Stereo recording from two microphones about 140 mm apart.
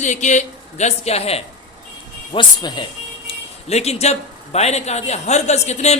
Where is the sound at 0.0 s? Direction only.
60° left (ahead or behind).